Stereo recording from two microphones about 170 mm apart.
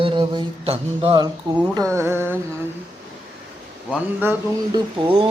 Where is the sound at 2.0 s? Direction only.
15° right (ahead or behind).